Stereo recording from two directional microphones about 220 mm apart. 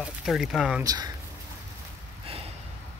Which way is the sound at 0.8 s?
20° right (ahead or behind).